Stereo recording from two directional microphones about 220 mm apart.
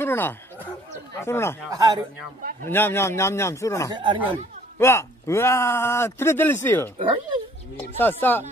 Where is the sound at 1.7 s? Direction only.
15° right (ahead or behind).